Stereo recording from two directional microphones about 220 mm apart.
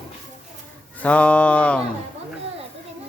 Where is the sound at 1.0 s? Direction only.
5° left (ahead or behind).